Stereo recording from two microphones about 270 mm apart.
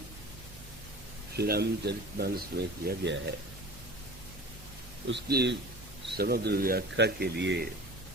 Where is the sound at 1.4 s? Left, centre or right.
Right.